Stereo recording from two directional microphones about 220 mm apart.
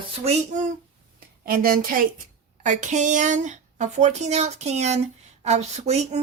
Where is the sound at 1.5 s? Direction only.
40° right (ahead or behind).